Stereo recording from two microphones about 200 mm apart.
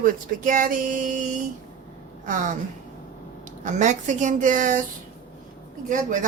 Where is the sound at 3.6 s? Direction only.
35° right (ahead or behind).